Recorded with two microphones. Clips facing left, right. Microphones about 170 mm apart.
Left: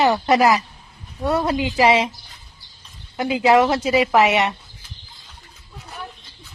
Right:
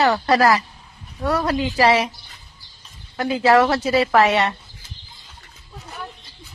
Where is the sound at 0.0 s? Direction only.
20° left (ahead or behind).